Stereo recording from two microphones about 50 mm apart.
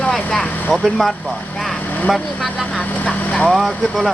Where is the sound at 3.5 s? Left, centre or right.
Centre.